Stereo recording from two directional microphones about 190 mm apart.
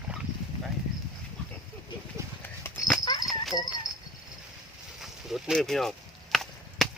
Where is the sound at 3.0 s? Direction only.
20° left (ahead or behind).